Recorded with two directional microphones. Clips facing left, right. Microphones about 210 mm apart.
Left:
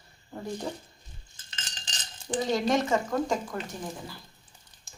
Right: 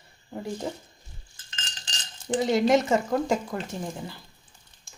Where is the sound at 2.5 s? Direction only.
25° right (ahead or behind).